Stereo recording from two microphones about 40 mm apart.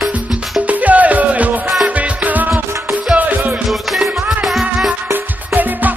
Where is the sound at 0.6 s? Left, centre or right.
Right.